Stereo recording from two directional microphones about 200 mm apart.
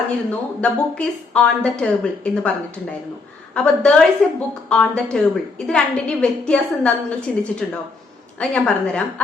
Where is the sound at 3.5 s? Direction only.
5° left (ahead or behind).